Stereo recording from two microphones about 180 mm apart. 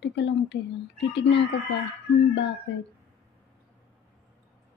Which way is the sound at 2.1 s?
85° left.